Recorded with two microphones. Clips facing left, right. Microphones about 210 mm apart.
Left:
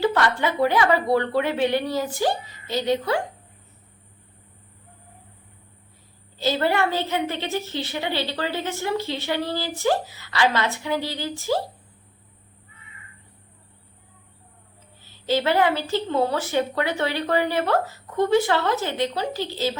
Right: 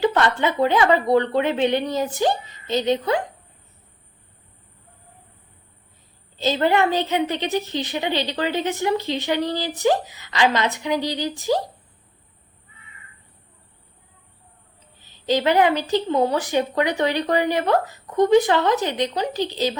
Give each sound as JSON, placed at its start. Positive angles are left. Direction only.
{"t": 0.0, "sound": "a woman's voice", "side_deg": -20}
{"t": 6.4, "sound": "a woman's voice", "side_deg": -20}
{"t": 15.0, "sound": "a woman's voice", "side_deg": -15}